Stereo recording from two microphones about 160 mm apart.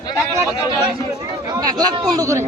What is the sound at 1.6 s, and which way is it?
Speech, 25° right (ahead or behind).